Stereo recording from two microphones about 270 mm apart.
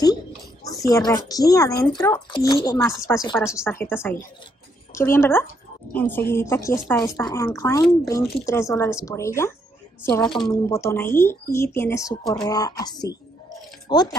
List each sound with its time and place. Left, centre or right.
0.8 s speech: centre